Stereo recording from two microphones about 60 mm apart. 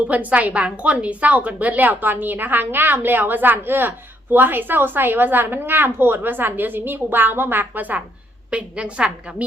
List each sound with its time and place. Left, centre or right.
0.1 s a woman's voice: right